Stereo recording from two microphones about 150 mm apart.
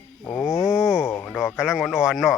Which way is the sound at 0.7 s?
5° right (ahead or behind).